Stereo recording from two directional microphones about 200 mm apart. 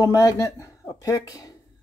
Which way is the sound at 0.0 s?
15° left (ahead or behind).